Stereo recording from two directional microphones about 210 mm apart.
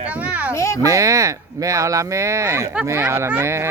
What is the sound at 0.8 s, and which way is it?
Speech, 15° right (ahead or behind).